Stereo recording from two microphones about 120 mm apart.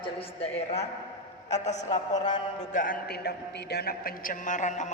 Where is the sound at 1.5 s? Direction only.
75° left (ahead or behind).